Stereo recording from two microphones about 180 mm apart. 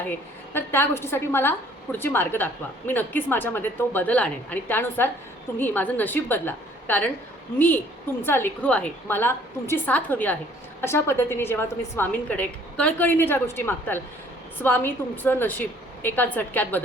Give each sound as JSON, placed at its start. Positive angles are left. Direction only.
{"t": 0.1, "sound": "a woman's voice", "side_deg": 10}
{"t": 8.2, "sound": "a woman's voice", "side_deg": 10}